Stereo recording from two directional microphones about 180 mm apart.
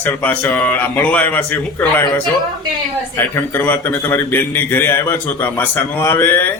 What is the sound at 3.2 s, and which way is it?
A man's voice, 10° left (ahead or behind).